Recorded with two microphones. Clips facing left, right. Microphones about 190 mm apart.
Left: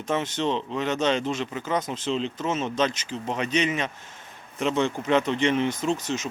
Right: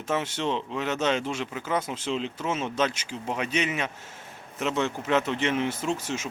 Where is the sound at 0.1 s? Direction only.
10° right (ahead or behind).